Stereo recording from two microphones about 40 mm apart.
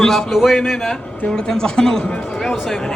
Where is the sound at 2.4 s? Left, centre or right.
Centre.